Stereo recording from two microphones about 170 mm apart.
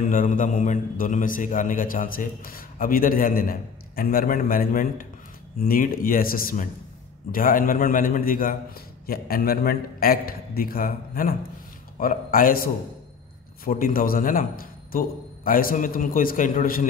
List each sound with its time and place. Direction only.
0.1 s a man's voice: 50° left (ahead or behind)
13.7 s a man's voice: 55° left (ahead or behind)